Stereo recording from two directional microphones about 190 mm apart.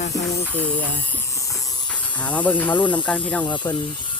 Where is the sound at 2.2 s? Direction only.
10° left (ahead or behind).